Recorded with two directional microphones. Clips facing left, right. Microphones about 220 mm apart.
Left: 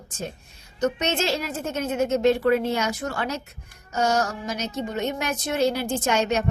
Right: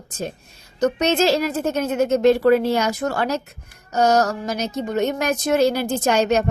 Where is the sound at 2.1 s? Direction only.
40° right (ahead or behind).